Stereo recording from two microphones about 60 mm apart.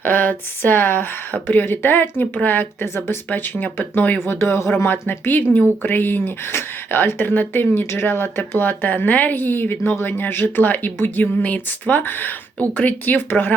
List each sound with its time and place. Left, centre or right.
0.0 s speech: left
2.8 s speech: left
3.2 s speech: left
4.3 s speech: left
4.8 s speech: left